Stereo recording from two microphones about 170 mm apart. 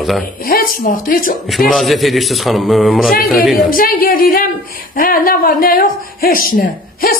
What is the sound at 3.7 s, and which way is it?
A woman's voice, 60° left (ahead or behind).